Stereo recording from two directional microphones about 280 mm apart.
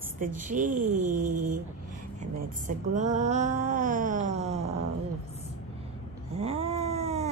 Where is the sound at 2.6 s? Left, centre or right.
Right.